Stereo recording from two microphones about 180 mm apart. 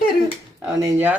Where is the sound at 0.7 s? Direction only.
20° right (ahead or behind).